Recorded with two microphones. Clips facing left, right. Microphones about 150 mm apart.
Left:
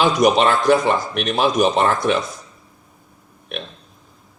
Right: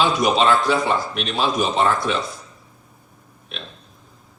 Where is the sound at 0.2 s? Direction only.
50° left (ahead or behind).